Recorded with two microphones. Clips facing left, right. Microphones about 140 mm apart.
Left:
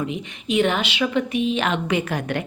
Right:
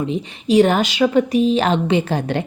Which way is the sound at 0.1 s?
35° right (ahead or behind).